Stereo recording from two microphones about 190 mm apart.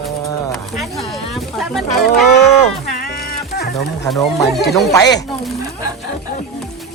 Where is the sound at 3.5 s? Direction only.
60° left (ahead or behind).